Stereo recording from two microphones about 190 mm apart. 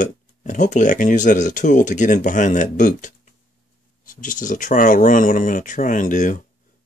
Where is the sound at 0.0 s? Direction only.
40° left (ahead or behind).